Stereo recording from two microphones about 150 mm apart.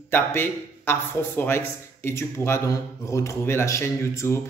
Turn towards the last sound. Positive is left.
turn(degrees=15)  # may be behind; listen again after turning